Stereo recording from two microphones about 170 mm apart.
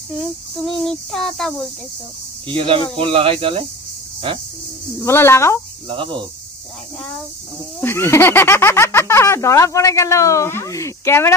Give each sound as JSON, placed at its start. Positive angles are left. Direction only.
{"t": 0.7, "sound": "child singing", "side_deg": 0}
{"t": 2.4, "sound": "speech", "side_deg": -30}
{"t": 5.0, "sound": "speech", "side_deg": 15}
{"t": 5.9, "sound": "speech", "side_deg": -30}
{"t": 7.8, "sound": "speech", "side_deg": 15}